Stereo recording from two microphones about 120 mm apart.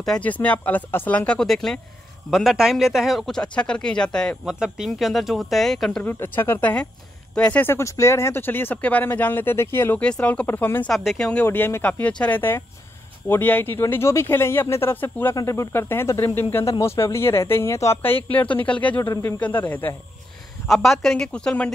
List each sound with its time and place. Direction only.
0.0 s speech: 10° left (ahead or behind)
4.5 s speech: 5° right (ahead or behind)
5.9 s speech: 15° left (ahead or behind)
10.9 s speech: 5° left (ahead or behind)
11.4 s speech: 20° left (ahead or behind)
20.6 s speech: centre (ahead or behind)